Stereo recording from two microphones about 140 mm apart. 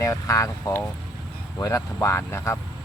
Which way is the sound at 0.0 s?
20° left (ahead or behind).